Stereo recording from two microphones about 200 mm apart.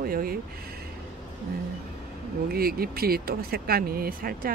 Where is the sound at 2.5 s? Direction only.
50° right (ahead or behind).